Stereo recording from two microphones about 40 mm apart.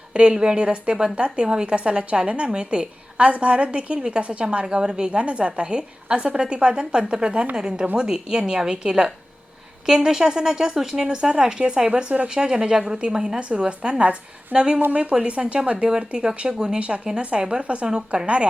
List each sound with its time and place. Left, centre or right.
0.1 s a woman's voice: right
12.0 s speech: right
12.3 s a woman's voice: centre
16.8 s a woman's voice: right
17.8 s speech: centre